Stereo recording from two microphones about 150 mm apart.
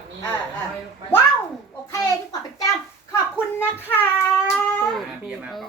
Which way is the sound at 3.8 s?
15° left (ahead or behind).